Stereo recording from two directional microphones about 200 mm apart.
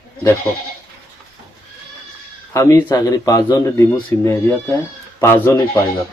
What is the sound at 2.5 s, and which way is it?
Speech, 15° left (ahead or behind).